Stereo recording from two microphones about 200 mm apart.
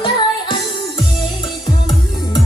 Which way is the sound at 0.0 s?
25° left (ahead or behind).